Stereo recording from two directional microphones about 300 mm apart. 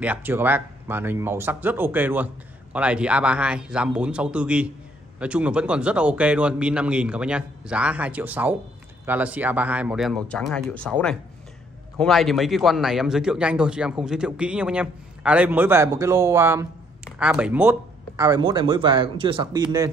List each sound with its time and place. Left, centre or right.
0.0 s a man's voice: centre